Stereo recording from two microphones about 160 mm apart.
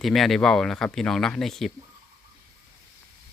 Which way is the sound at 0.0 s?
Centre (ahead or behind).